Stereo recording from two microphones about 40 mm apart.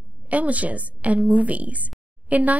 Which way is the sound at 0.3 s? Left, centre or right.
Right.